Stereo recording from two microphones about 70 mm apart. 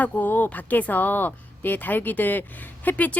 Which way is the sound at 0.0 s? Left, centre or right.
Left.